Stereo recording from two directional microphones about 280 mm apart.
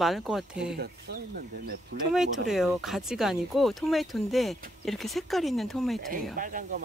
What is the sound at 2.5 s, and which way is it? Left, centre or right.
Speech, centre.